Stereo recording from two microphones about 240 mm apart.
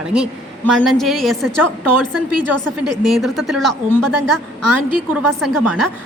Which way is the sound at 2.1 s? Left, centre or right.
Right.